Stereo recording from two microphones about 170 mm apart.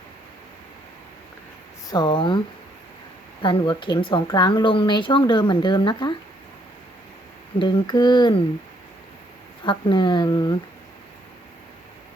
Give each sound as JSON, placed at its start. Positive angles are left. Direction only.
{"t": 1.9, "sound": "speech", "side_deg": 25}
{"t": 3.4, "sound": "speech", "side_deg": 30}
{"t": 7.6, "sound": "speech", "side_deg": 25}
{"t": 9.6, "sound": "speech", "side_deg": 30}